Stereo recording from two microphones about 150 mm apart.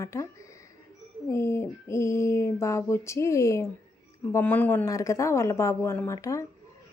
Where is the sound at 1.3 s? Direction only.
20° left (ahead or behind).